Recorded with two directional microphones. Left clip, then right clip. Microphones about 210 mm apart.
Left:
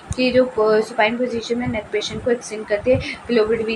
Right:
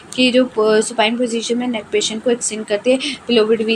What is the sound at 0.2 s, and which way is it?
A woman's voice, 30° right (ahead or behind).